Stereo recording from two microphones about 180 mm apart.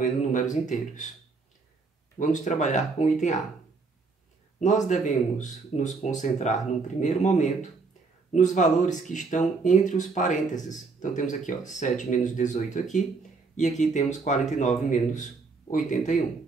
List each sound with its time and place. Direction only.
0.0 s speech: 45° left (ahead or behind)
2.1 s speech: 45° left (ahead or behind)
4.6 s speech: 40° left (ahead or behind)